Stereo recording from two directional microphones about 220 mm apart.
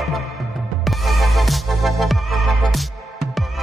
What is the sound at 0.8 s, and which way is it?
Music, centre (ahead or behind).